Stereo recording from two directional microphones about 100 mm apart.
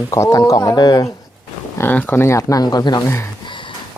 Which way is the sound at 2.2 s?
30° left (ahead or behind).